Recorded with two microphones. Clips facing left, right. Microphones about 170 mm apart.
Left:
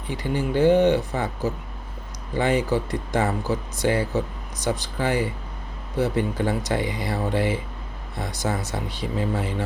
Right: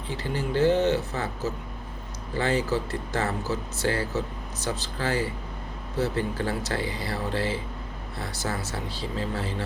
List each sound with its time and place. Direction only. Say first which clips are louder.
0.1 s speech: left 4 dB; 15° left (ahead or behind)